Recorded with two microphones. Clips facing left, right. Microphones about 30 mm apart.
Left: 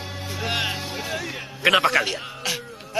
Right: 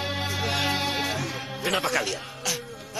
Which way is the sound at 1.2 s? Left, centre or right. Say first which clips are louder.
Left 1 dB; left.